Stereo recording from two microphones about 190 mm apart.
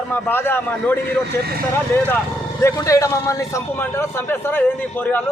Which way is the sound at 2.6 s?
15° left (ahead or behind).